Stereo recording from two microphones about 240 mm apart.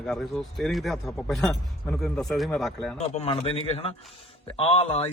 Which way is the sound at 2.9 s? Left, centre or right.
Left.